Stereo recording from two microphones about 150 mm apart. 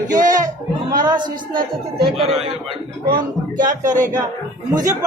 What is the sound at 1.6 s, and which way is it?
Speech, 90° right.